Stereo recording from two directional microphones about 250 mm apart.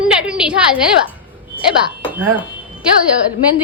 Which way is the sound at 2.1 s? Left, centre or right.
Centre.